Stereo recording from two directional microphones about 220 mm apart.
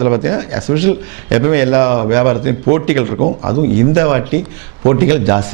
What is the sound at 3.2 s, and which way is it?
Speech, 35° right (ahead or behind).